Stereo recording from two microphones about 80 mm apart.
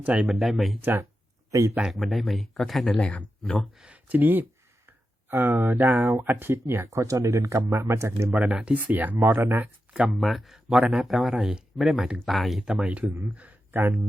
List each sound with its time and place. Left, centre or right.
0.0 s speech: centre
0.3 s speech: centre
0.8 s speech: right
1.5 s speech: right
1.8 s speech: centre
2.9 s speech: centre
3.8 s speech: centre
6.8 s speech: right
8.4 s speech: centre
9.9 s speech: centre
12.7 s speech: centre
13.7 s a sound: right